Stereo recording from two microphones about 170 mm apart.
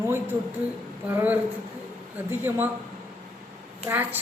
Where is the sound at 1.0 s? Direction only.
10° right (ahead or behind).